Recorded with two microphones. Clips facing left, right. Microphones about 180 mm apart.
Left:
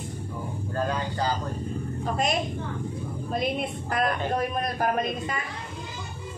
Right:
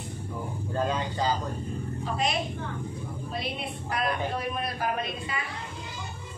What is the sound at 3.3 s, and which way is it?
A man's voice, 50° left (ahead or behind).